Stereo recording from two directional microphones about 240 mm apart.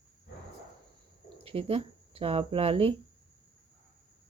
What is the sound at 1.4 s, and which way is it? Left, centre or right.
Speech, right.